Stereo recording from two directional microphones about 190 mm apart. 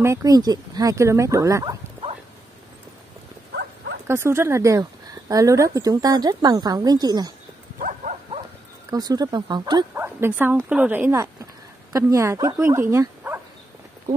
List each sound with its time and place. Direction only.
0.0 s speech: 15° right (ahead or behind)
3.5 s dog: 60° right (ahead or behind)
4.1 s speech: 15° right (ahead or behind)
7.8 s bow-wow: 40° right (ahead or behind)
8.9 s speech: 20° right (ahead or behind)
10.0 s speech: 10° right (ahead or behind)